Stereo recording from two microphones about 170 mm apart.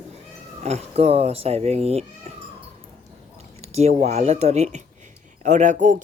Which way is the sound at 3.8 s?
40° right (ahead or behind).